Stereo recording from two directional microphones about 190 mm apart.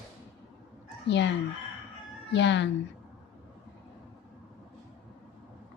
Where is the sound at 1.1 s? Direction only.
70° left (ahead or behind).